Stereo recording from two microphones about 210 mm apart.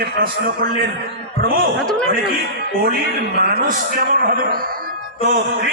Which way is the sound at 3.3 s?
45° right (ahead or behind).